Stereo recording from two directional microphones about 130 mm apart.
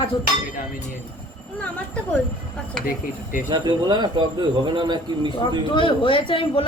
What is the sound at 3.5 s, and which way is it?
A man's voice, 35° right (ahead or behind).